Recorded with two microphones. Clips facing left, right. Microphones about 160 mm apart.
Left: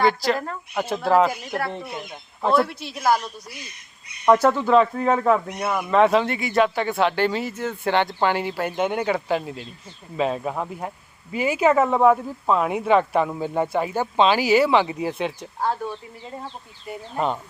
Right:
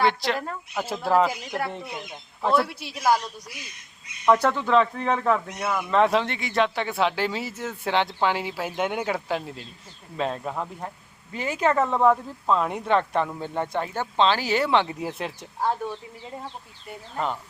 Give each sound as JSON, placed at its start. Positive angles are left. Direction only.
{"t": 0.0, "sound": "speech", "side_deg": 0}
{"t": 2.4, "sound": "a man's voice", "side_deg": 5}
{"t": 2.6, "sound": "a woman's voice", "side_deg": -10}
{"t": 4.3, "sound": "a man's voice", "side_deg": 5}
{"t": 5.9, "sound": "a man's voice", "side_deg": 0}
{"t": 17.2, "sound": "speech", "side_deg": 20}